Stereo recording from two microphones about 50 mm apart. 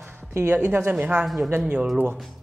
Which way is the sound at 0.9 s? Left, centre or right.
Right.